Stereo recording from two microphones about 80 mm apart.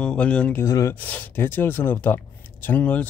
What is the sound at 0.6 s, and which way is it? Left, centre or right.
Speech, left.